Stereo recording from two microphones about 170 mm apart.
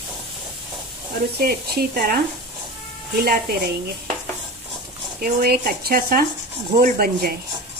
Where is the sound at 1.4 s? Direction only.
65° right (ahead or behind).